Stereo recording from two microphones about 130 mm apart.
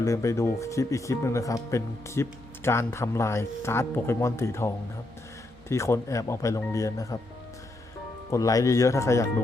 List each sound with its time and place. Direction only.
0.0 s speech: 25° left (ahead or behind)
8.3 s speech: 25° left (ahead or behind)